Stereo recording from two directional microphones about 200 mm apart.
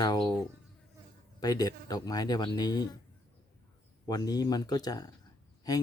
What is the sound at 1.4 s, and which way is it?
Speech, 20° left (ahead or behind).